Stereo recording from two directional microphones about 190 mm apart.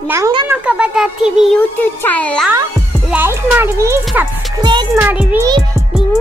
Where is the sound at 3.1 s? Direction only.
10° right (ahead or behind).